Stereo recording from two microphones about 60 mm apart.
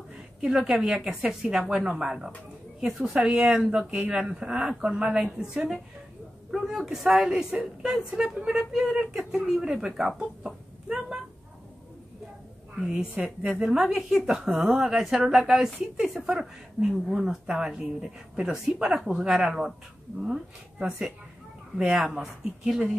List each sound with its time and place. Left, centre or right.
0.4 s a woman's voice: centre
12.8 s a woman's voice: centre
13.7 s a woman's voice: centre
22.1 s a woman's voice: centre